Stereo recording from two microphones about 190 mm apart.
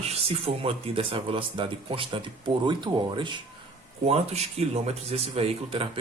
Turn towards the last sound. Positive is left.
turn(degrees=-30)  # may be behind; listen again after turning